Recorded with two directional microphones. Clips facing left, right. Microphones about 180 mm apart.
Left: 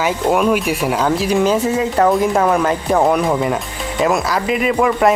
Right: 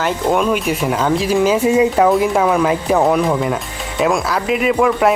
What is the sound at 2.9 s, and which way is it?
A man's voice, 5° left (ahead or behind).